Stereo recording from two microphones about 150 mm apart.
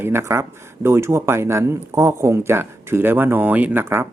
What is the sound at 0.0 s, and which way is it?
Speech, 15° right (ahead or behind).